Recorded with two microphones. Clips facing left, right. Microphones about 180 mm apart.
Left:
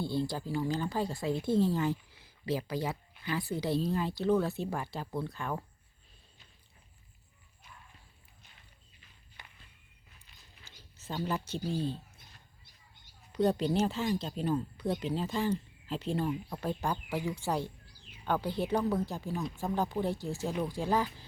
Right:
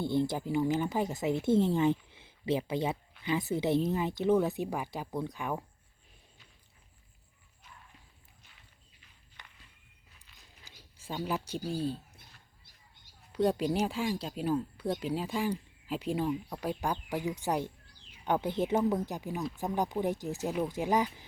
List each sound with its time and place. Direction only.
0.0 s speech: 20° right (ahead or behind)
10.7 s a sound: 10° right (ahead or behind)
11.7 s speech: 10° right (ahead or behind)
13.5 s speech: 10° right (ahead or behind)